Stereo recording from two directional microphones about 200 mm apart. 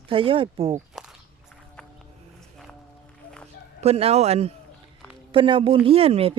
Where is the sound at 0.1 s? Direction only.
25° right (ahead or behind).